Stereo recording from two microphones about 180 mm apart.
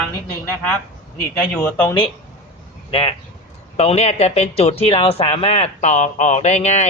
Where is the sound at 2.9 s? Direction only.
35° left (ahead or behind).